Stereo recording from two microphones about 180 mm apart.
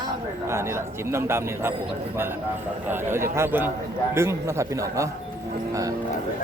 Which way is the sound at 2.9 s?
15° right (ahead or behind).